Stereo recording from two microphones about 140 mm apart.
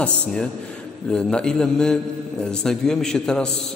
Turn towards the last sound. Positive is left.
turn(degrees=5)  # may be behind; listen again after turning